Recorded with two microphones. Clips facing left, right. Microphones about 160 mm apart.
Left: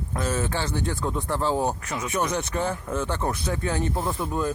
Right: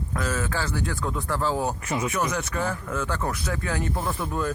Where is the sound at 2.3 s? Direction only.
25° left (ahead or behind).